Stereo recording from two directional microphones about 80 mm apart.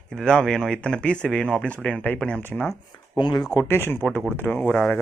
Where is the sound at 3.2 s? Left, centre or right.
Left.